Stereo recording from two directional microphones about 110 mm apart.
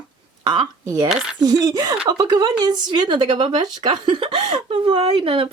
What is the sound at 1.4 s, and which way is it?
Speech, 35° right (ahead or behind).